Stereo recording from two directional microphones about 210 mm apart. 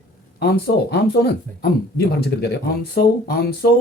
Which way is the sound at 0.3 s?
50° left (ahead or behind).